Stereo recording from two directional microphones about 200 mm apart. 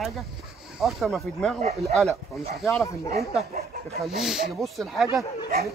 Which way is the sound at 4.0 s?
Centre (ahead or behind).